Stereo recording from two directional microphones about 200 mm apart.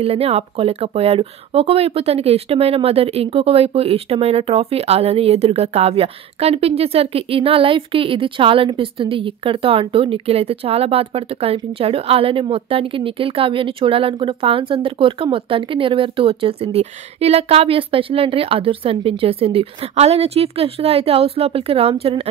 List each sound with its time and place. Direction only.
0.0 s a woman's voice: 30° right (ahead or behind)